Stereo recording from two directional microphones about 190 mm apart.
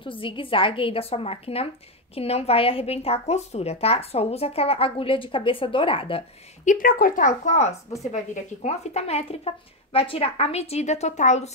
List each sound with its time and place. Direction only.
0.0 s a woman's voice: 25° left (ahead or behind)
6.6 s speech: 45° left (ahead or behind)